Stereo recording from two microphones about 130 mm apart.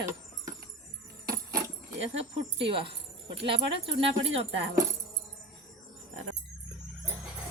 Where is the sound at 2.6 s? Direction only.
45° right (ahead or behind).